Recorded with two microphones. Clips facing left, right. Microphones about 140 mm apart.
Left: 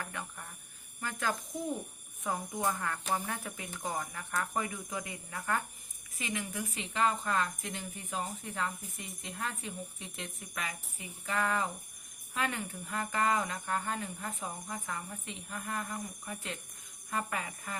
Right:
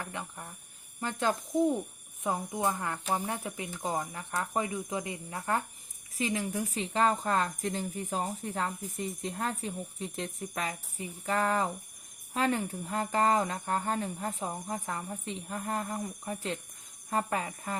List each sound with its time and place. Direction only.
0.0 s speech: 20° right (ahead or behind)